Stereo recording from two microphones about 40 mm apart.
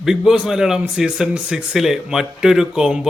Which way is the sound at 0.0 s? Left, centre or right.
Centre.